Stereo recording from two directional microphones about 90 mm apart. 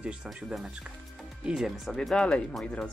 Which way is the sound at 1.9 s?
10° left (ahead or behind).